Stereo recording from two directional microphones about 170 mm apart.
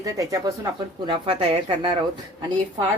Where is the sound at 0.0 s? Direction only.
20° right (ahead or behind).